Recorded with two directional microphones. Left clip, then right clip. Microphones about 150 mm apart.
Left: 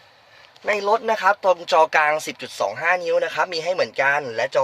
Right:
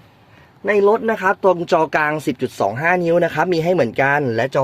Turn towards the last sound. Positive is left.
turn(degrees=-25)  # may be behind; listen again after turning